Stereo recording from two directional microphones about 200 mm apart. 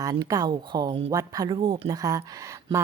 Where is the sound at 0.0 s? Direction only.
20° right (ahead or behind).